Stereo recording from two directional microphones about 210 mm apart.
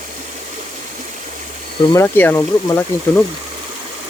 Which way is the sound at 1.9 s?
10° left (ahead or behind).